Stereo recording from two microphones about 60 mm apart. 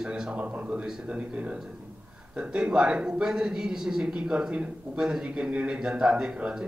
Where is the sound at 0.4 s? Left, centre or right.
Right.